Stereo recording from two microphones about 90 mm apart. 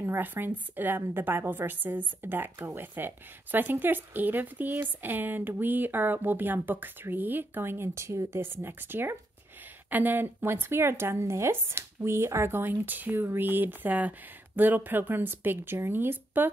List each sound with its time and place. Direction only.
0.0 s a woman's voice: 25° right (ahead or behind)